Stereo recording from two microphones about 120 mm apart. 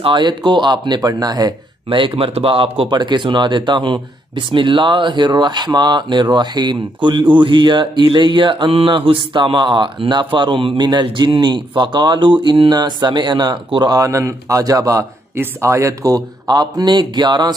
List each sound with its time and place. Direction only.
0.0 s speech: 40° right (ahead or behind)
1.9 s speech: 45° right (ahead or behind)
2.9 s a man's voice: 40° right (ahead or behind)